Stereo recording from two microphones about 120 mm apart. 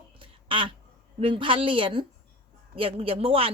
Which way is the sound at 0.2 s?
45° right (ahead or behind).